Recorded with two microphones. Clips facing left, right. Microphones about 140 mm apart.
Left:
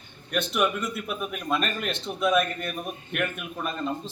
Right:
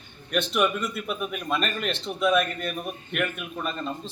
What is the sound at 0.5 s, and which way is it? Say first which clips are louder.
A man's voice: even; centre (ahead or behind).